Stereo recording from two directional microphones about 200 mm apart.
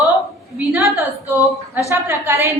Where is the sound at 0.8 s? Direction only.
15° right (ahead or behind).